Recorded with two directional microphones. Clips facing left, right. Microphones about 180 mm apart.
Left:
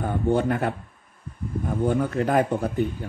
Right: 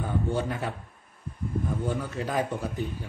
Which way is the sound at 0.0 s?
55° left (ahead or behind).